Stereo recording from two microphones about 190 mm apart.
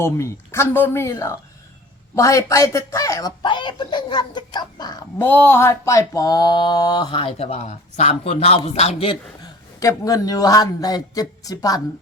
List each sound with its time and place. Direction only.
0.0 s a woman's voice: 15° left (ahead or behind)
5.1 s speech: 10° left (ahead or behind); by 9.5 s 30° left (ahead or behind)
9.8 s speech: 20° left (ahead or behind)